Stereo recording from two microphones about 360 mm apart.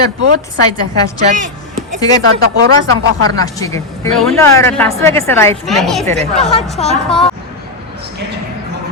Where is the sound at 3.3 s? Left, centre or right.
Centre.